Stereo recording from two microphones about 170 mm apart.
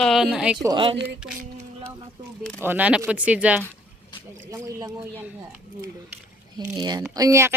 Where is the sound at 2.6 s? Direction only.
10° right (ahead or behind).